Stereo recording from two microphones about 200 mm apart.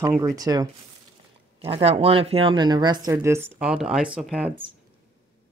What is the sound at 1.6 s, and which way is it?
Speech, 30° right (ahead or behind).